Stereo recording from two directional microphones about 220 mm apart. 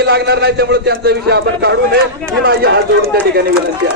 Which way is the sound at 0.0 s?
50° right (ahead or behind).